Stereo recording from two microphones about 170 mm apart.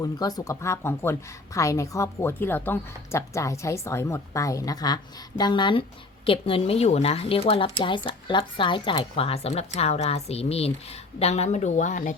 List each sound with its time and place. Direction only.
0.0 s a woman's voice: 20° left (ahead or behind); by 12.1 s 45° left (ahead or behind)